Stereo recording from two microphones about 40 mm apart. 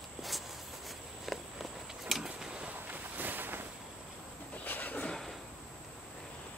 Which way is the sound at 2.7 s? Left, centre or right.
Right.